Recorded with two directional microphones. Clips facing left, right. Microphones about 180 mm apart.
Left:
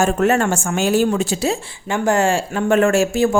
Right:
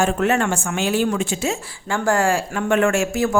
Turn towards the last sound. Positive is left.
turn(degrees=30)  # may be behind; listen again after turning